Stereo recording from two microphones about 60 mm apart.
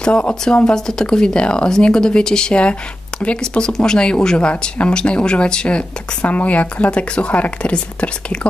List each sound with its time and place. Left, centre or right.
0.0 s speech: centre